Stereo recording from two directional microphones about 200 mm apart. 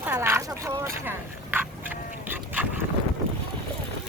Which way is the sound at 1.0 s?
10° right (ahead or behind).